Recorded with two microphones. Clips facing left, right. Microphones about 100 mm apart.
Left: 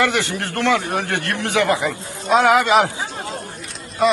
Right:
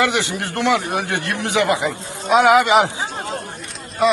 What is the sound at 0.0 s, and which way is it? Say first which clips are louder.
A man's voice: even; 20° right (ahead or behind).